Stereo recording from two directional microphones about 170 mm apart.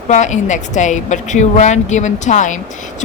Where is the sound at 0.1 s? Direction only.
45° left (ahead or behind).